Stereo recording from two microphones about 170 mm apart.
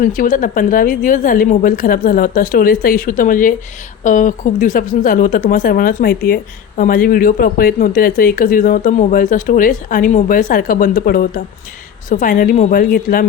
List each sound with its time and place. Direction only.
0.0 s a woman's voice: 50° left (ahead or behind)